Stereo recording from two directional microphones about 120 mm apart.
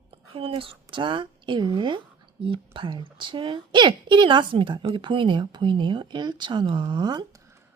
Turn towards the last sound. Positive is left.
turn(degrees=-35)  # may be behind; listen again after turning